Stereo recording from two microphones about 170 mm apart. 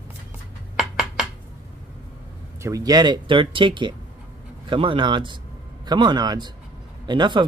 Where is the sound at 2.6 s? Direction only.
20° right (ahead or behind).